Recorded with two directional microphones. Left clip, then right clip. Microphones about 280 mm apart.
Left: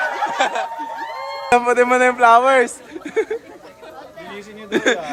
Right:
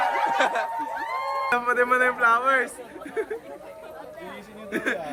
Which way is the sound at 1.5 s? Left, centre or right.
Centre.